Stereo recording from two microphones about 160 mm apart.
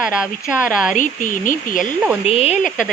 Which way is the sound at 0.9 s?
55° left (ahead or behind).